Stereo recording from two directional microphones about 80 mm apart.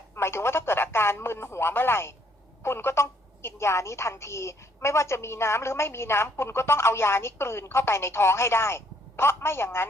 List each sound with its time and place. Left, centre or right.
0.2 s a woman's voice: left